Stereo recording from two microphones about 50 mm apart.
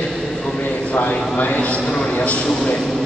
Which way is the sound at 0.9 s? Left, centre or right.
Left.